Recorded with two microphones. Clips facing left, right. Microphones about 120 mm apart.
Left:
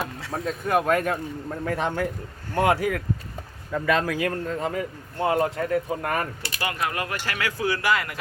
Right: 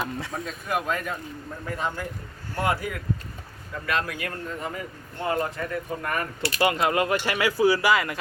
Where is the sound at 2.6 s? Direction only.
90° left.